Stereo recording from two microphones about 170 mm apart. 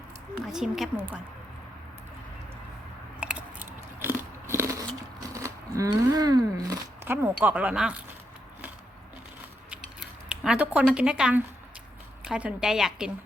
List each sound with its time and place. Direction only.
0.4 s a woman's voice: centre (ahead or behind)
3.2 s biting: 5° right (ahead or behind)
5.3 s speech: 20° right (ahead or behind)
9.6 s a sound: 5° right (ahead or behind)
12.2 s a woman's voice: 5° right (ahead or behind)